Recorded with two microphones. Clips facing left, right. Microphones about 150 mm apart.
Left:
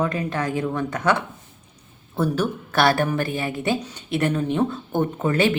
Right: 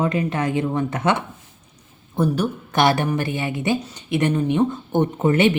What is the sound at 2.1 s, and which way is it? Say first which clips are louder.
Speech: right 2 dB; 15° right (ahead or behind).